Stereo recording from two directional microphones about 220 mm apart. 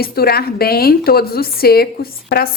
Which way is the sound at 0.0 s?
45° left (ahead or behind).